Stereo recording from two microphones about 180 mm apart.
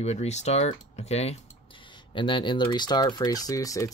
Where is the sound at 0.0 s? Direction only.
40° left (ahead or behind).